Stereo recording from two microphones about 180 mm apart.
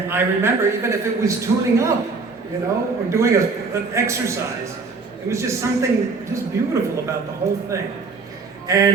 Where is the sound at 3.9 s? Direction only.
15° right (ahead or behind).